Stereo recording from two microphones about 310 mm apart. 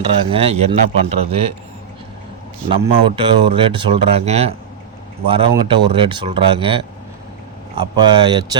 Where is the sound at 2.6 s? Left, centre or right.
Centre.